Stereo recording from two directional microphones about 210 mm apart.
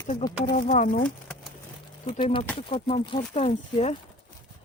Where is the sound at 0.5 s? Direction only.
35° left (ahead or behind).